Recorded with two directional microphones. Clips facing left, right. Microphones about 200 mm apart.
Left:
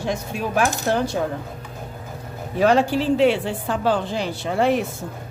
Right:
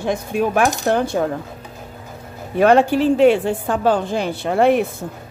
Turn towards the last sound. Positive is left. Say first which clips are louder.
# right 5 dB
turn(degrees=-55)  # may be behind; listen again after turning